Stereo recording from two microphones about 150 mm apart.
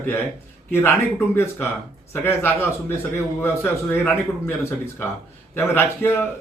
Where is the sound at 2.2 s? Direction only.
15° left (ahead or behind).